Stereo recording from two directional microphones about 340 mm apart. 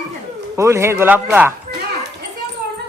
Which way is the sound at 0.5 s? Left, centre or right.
Centre.